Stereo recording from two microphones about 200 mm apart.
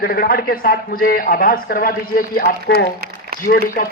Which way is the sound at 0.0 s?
50° left (ahead or behind).